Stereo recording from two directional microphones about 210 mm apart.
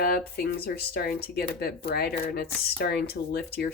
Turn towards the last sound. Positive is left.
turn(degrees=50)  # may be behind; listen again after turning